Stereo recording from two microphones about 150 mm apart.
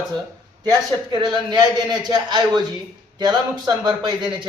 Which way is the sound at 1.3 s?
30° right (ahead or behind).